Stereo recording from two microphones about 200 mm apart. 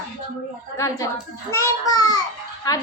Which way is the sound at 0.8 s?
15° left (ahead or behind).